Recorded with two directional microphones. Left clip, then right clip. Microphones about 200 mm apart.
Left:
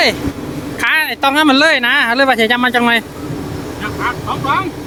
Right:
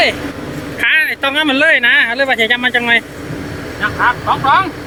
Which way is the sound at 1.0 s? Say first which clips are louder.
Left 2 dB; 25° left (ahead or behind).